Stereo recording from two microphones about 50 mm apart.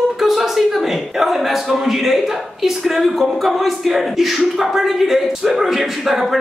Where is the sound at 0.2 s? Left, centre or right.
Centre.